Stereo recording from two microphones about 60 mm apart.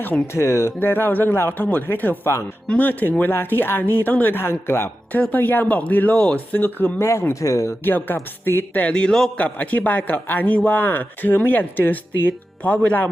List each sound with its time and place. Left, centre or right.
0.3 s speech: left
0.8 s speech: left
5.3 s speech: left
7.0 s speech: left
7.9 s speech: left; by 9.3 s centre
9.4 s speech: left